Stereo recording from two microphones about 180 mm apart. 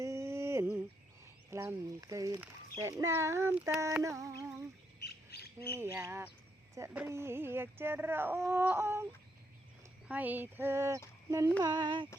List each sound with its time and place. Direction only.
0.0 s a sound: 15° right (ahead or behind)
1.5 s speech: 15° right (ahead or behind)
4.9 s squawk: 65° left (ahead or behind)
5.7 s speech: 15° right (ahead or behind)
10.1 s speech: 10° right (ahead or behind)
11.6 s a sound: 25° right (ahead or behind)